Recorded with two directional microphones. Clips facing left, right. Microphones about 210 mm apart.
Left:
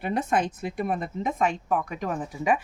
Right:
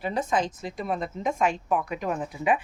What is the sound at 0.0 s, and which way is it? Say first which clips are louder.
Speech: left 1 dB; 60° left (ahead or behind).